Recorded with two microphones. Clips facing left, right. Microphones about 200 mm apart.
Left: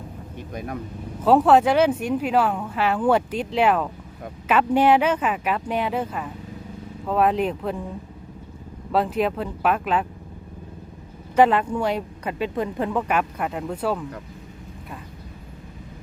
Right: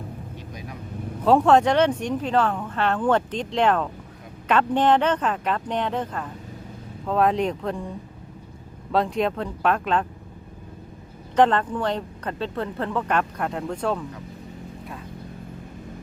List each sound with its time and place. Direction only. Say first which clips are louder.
0.5 s vehicle: left 10 dB; 55° left (ahead or behind)
1.2 s speech: left 1 dB; 5° left (ahead or behind)
8.9 s speech: left 1 dB; 5° left (ahead or behind)
11.3 s speech: left 1 dB; 10° left (ahead or behind)